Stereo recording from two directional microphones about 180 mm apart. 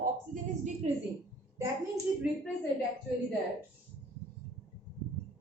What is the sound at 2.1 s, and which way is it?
Speech, 10° right (ahead or behind).